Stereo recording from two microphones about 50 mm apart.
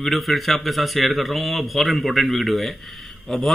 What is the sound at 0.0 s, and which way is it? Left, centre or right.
A man's voice, centre.